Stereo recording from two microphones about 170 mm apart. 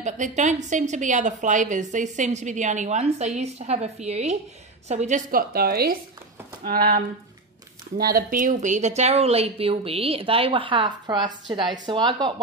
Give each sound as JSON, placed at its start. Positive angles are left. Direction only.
{"t": 0.0, "sound": "a woman's voice", "side_deg": -45}
{"t": 8.0, "sound": "a woman's voice", "side_deg": -60}